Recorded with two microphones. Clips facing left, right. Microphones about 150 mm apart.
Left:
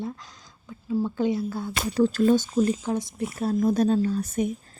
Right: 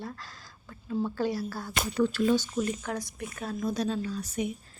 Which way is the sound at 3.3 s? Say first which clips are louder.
Left 9 dB; 35° left (ahead or behind).